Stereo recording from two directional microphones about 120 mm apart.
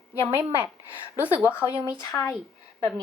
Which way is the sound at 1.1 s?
15° right (ahead or behind).